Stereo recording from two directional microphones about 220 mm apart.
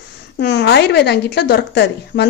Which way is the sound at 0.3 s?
50° left (ahead or behind).